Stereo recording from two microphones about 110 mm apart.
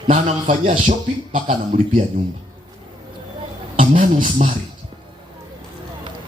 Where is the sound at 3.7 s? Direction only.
80° right.